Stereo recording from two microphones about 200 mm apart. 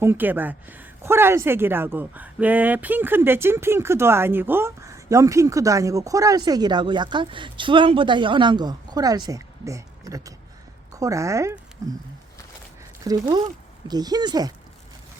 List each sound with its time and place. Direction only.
0.0 s speech: 10° right (ahead or behind)
13.1 s speech: 20° right (ahead or behind)